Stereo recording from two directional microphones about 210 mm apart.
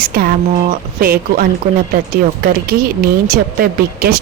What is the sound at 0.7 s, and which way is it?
Speech, 45° right (ahead or behind).